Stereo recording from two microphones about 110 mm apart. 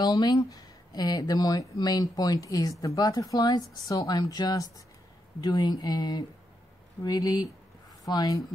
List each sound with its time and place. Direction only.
0.0 s speech: 35° left (ahead or behind)